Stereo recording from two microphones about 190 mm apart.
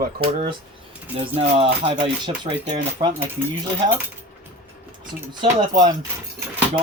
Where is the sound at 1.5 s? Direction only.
30° right (ahead or behind).